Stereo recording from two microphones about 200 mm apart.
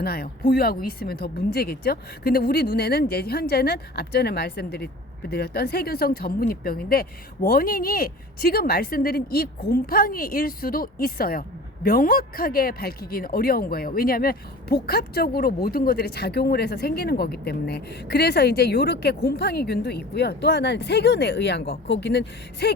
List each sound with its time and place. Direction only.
0.0 s speech: 50° left (ahead or behind)